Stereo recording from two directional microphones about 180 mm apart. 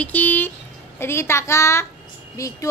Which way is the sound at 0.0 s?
10° left (ahead or behind).